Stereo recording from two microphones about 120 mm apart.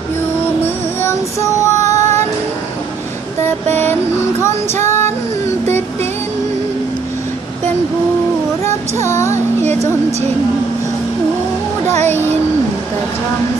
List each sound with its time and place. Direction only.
1.0 s female singing: 25° left (ahead or behind)
2.0 s child singing: 20° left (ahead or behind)
3.4 s a sound: 15° left (ahead or behind)
4.4 s female singing: 20° left (ahead or behind)
8.6 s child singing: 25° left (ahead or behind)
9.3 s a sound: 70° right (ahead or behind)